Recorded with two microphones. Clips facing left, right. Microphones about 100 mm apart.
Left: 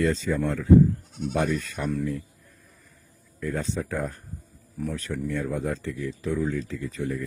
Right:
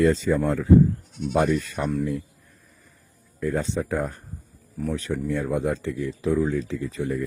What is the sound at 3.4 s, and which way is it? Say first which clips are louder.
Speech: right 4 dB; 35° right (ahead or behind).